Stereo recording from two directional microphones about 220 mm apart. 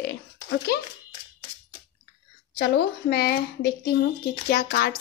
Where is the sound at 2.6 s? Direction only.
45° left (ahead or behind).